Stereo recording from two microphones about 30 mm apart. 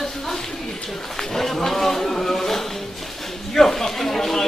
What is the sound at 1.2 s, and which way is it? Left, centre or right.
Speech, centre.